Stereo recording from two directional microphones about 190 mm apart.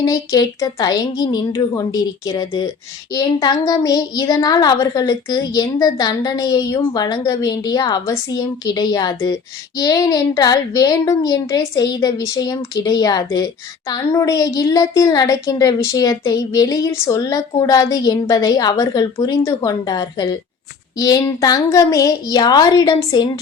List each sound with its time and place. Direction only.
0.0 s a woman's voice: 20° left (ahead or behind)